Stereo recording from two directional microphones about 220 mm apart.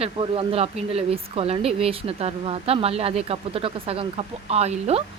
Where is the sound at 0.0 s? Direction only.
25° right (ahead or behind).